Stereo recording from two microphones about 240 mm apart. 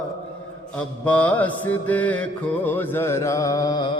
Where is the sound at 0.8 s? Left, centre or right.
Centre.